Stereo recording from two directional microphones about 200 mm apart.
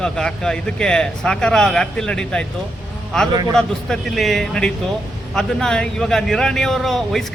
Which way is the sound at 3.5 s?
Centre (ahead or behind).